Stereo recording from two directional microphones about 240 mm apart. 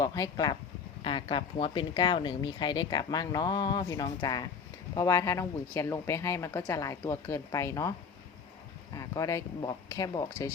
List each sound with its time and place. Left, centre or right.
0.0 s speech: centre
9.0 s speech: centre